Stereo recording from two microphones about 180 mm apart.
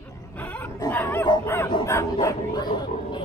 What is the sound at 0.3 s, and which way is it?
Dog, 10° left (ahead or behind).